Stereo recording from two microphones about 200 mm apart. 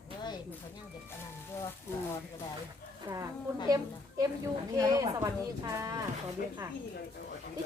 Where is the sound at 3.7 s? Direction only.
20° right (ahead or behind).